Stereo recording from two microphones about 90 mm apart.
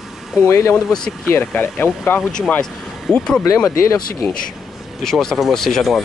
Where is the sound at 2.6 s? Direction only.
5° left (ahead or behind).